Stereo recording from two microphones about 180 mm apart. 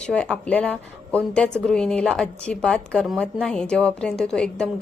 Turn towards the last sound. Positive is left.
turn(degrees=5)  # may be behind; listen again after turning